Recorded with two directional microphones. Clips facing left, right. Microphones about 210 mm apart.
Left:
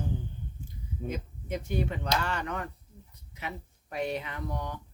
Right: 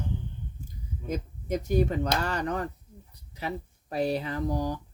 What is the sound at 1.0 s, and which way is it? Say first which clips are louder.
Speech: right 4 dB; 40° right (ahead or behind).